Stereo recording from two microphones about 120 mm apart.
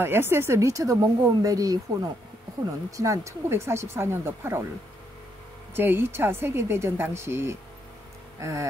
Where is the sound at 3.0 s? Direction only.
25° right (ahead or behind).